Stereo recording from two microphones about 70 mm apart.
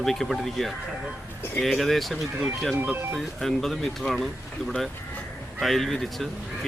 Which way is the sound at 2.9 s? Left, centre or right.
Right.